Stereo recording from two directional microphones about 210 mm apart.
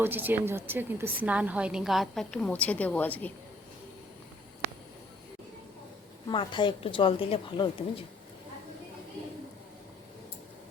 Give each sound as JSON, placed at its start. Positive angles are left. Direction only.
{"t": 0.0, "sound": "a woman's voice", "side_deg": -10}
{"t": 6.2, "sound": "speech", "side_deg": 25}